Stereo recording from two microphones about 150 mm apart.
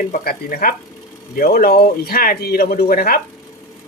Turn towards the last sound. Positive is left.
turn(degrees=80)